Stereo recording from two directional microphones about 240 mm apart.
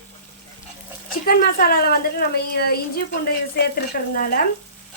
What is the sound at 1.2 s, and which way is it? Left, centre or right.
A woman's voice, left.